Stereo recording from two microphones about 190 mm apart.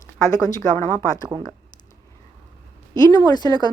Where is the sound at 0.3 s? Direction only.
20° left (ahead or behind).